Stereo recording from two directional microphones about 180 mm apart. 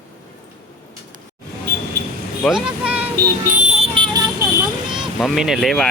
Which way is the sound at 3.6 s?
35° right (ahead or behind).